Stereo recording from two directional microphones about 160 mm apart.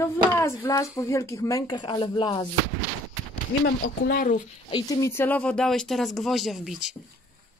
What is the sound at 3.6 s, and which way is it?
Speech, 90° left.